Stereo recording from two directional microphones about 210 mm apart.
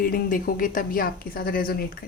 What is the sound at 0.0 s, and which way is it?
A woman's voice, 40° left (ahead or behind).